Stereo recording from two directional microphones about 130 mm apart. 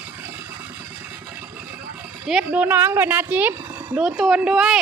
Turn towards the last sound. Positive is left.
turn(degrees=-5)  # may be behind; listen again after turning